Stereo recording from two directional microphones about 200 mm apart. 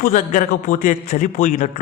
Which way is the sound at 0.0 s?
40° left (ahead or behind).